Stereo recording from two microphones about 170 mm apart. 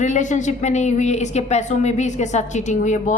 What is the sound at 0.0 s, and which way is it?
A woman's voice, 45° left (ahead or behind).